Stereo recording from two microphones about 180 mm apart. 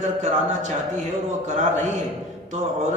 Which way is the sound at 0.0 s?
40° right (ahead or behind).